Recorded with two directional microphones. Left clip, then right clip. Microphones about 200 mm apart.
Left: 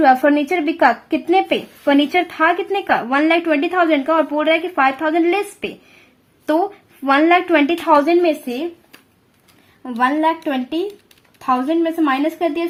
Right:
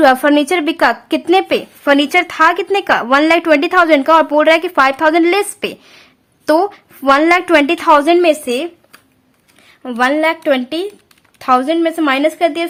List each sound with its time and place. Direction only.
0.0 s speech: 20° right (ahead or behind)
9.8 s a woman's voice: 30° right (ahead or behind)